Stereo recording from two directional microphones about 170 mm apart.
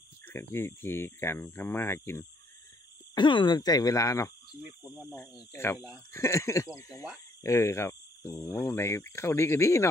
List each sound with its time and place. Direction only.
0.3 s speech: 15° left (ahead or behind)
3.2 s speech: 25° left (ahead or behind)
4.6 s speech: 10° right (ahead or behind)
5.5 s speech: 15° left (ahead or behind)